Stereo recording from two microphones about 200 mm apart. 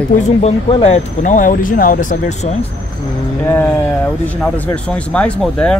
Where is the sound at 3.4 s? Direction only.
10° left (ahead or behind).